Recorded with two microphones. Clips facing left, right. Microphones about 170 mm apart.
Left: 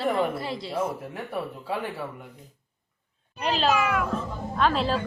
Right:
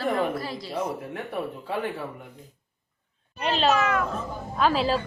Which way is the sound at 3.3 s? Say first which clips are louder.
Right 1 dB; centre (ahead or behind).